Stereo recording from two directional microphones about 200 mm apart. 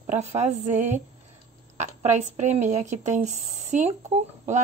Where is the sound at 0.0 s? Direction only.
35° right (ahead or behind).